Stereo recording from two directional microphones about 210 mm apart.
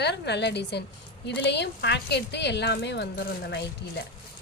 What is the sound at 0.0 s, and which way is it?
A woman's voice, 55° left (ahead or behind).